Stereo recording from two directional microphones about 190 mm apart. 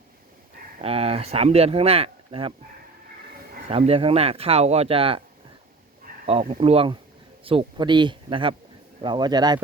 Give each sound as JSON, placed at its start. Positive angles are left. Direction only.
{"t": 0.8, "sound": "speech", "side_deg": -30}
{"t": 3.7, "sound": "speech", "side_deg": -30}
{"t": 6.1, "sound": "a sound", "side_deg": -45}
{"t": 6.5, "sound": "speech", "side_deg": -30}